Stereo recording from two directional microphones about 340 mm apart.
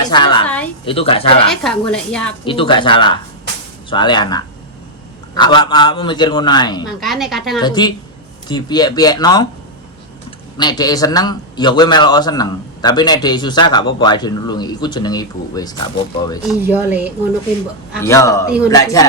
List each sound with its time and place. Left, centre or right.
0.0 s a sound: centre
0.9 s a man's voice: centre
1.5 s a woman's voice: centre
2.4 s a man's voice: centre
7.0 s a woman's voice: centre
7.6 s a man's voice: centre
10.6 s a man's voice: centre
16.5 s a woman's voice: centre
18.0 s a man's voice: centre